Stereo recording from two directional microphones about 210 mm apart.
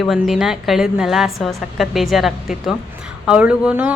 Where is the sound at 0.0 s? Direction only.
Centre (ahead or behind).